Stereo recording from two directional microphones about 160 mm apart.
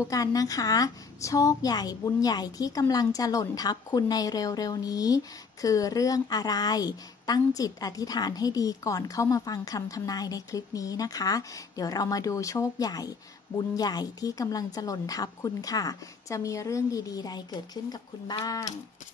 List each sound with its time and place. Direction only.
0.0 s a woman's voice: 20° left (ahead or behind)